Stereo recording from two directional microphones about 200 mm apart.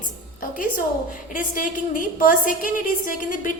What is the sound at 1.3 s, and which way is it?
A woman's voice, 40° left (ahead or behind).